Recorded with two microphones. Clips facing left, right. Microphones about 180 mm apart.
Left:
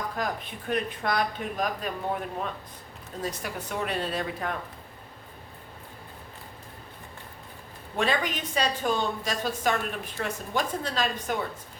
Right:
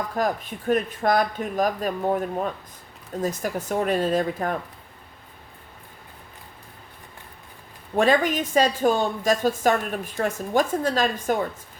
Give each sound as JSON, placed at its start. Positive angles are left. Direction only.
{"t": 0.2, "sound": "a woman's voice", "side_deg": -45}
{"t": 7.9, "sound": "a woman's voice", "side_deg": -45}